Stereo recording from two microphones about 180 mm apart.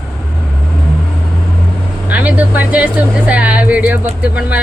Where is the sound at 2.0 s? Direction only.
10° right (ahead or behind).